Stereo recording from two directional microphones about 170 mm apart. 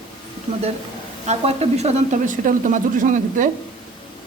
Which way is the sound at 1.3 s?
40° right (ahead or behind).